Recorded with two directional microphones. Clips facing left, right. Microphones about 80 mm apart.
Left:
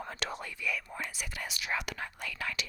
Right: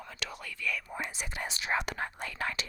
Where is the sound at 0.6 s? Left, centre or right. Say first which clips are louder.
Right 1 dB; centre.